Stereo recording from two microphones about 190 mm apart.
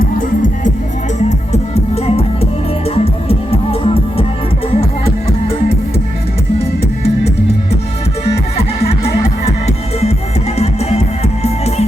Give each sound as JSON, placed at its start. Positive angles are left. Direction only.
{"t": 0.0, "sound": "music", "side_deg": 45}
{"t": 1.3, "sound": "music", "side_deg": 35}
{"t": 8.2, "sound": "music", "side_deg": 35}